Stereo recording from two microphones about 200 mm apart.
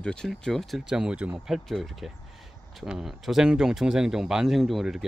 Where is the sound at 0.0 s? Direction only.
5° left (ahead or behind).